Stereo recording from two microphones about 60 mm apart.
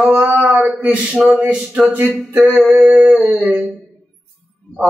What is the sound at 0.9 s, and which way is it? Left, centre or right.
Speech, centre.